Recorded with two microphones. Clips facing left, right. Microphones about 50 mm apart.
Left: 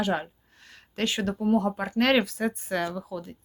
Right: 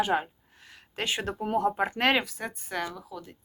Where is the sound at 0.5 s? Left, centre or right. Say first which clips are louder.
Left 1 dB; centre.